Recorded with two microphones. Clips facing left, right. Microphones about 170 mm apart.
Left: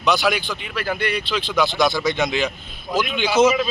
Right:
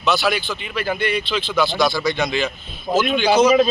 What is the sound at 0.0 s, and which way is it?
Speech, 15° left (ahead or behind).